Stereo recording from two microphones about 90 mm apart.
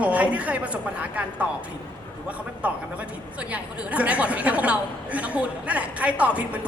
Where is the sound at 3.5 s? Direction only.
15° right (ahead or behind).